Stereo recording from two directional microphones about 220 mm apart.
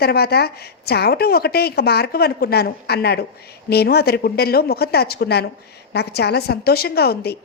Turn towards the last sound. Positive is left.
turn(degrees=45)  # may be behind; listen again after turning